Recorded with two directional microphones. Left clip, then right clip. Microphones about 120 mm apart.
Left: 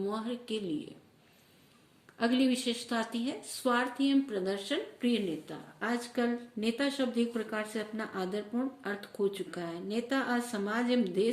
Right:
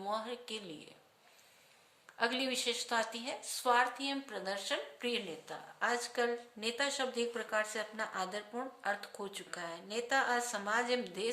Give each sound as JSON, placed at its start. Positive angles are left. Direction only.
{"t": 0.1, "sound": "a woman's voice", "side_deg": -35}
{"t": 2.1, "sound": "speech", "side_deg": -35}